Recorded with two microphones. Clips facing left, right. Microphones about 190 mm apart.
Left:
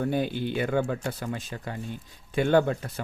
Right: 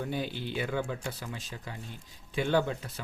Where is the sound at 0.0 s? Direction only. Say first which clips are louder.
Left 7 dB; 55° left (ahead or behind).